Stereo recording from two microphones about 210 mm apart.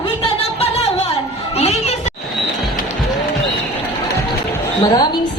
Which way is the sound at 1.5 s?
30° left (ahead or behind).